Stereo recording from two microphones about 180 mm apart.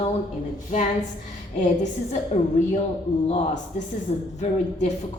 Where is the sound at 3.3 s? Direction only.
35° left (ahead or behind).